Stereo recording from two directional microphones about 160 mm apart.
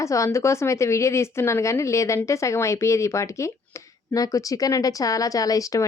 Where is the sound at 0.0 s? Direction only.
20° left (ahead or behind).